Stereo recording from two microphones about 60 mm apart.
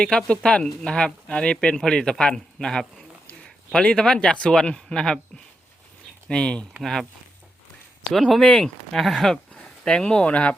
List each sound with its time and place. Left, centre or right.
0.0 s speech: centre
3.8 s speech: centre
6.2 s speech: centre
6.8 s speech: centre
8.1 s speech: centre; by 10.5 s left